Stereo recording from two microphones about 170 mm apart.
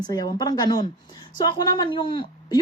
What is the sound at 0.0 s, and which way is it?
Speech, 25° left (ahead or behind).